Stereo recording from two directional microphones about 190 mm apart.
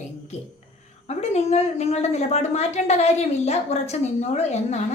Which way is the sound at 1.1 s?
35° left (ahead or behind).